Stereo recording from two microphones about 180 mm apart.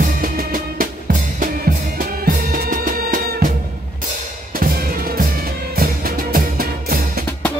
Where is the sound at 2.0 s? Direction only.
50° right (ahead or behind).